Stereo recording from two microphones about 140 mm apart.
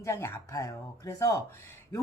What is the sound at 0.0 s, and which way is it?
Speech, 20° left (ahead or behind).